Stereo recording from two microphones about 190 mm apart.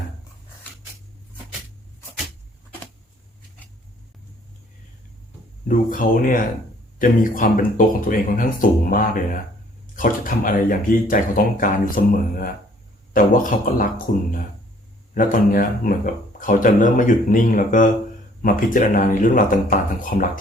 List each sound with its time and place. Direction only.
5.6 s speech: 45° left (ahead or behind)